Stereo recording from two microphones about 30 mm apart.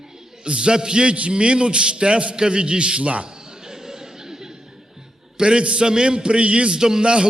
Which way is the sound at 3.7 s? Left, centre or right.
Centre.